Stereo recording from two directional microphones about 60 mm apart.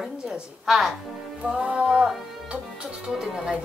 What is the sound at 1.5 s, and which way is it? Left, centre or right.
Music, centre.